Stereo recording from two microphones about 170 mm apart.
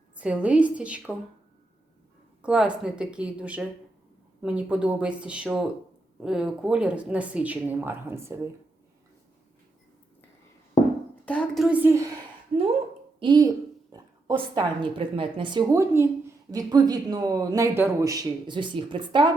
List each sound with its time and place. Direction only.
0.2 s a woman's voice: 5° right (ahead or behind)
2.4 s a woman's voice: 5° right (ahead or behind)
11.3 s a woman's voice: 5° left (ahead or behind); by 12.1 s 15° right (ahead or behind)
13.1 s a child's voice: 25° right (ahead or behind)